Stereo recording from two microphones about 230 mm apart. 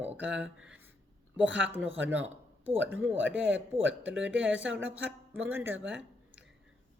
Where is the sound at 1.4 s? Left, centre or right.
Right.